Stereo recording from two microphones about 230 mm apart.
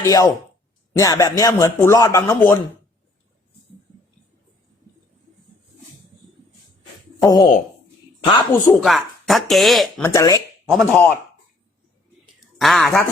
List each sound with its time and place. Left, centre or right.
0.0 s speech: centre
7.2 s speech: centre
8.7 s speech: centre
10.0 s speech: centre
10.7 s speech: centre
12.5 s speech: centre